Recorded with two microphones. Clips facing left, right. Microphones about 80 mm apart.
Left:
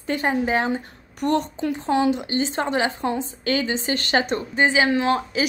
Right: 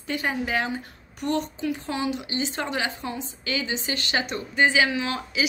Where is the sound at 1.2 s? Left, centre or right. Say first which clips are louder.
Left 5 dB; left.